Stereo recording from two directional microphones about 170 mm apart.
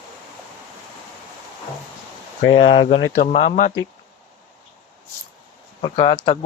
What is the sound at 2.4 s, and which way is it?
Speech, 30° left (ahead or behind).